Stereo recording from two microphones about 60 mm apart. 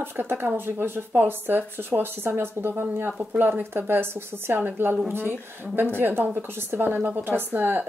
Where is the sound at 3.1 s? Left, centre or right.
Right.